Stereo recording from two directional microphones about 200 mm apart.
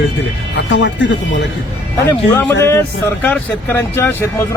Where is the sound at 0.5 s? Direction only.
65° left (ahead or behind).